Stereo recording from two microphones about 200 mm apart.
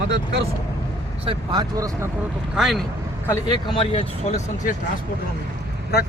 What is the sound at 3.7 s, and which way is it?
Speech, 30° left (ahead or behind).